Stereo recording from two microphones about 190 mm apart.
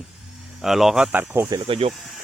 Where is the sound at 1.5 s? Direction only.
30° right (ahead or behind).